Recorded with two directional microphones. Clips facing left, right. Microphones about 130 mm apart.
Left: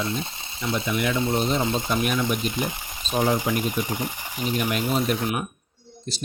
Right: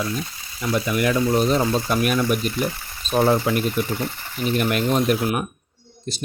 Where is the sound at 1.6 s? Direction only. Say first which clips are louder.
Right 3 dB; 20° left (ahead or behind).